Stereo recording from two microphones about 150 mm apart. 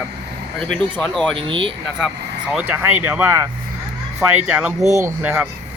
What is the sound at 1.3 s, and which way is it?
Speech, 35° right (ahead or behind).